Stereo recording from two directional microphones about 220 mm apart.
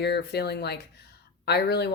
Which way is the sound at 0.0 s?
50° left (ahead or behind).